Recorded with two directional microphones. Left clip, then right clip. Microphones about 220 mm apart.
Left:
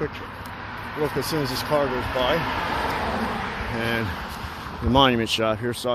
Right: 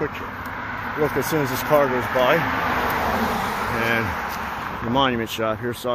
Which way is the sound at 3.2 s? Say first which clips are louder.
Right 5 dB; 45° right (ahead or behind).